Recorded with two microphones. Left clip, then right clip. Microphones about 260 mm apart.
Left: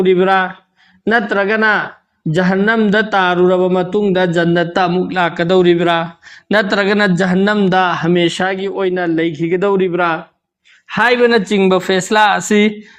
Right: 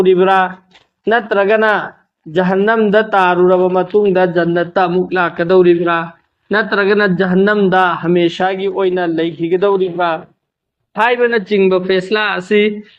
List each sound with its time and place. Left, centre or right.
0.0 s a man's voice: left